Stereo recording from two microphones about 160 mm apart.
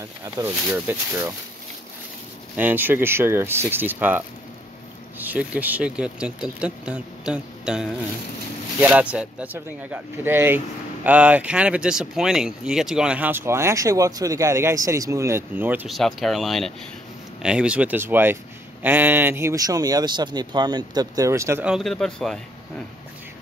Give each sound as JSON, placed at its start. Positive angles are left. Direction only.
{"t": 0.2, "sound": "speech", "side_deg": -15}
{"t": 2.5, "sound": "speech", "side_deg": -10}
{"t": 5.2, "sound": "speech", "side_deg": -10}
{"t": 15.9, "sound": "speech", "side_deg": 0}
{"t": 21.6, "sound": "speech", "side_deg": 0}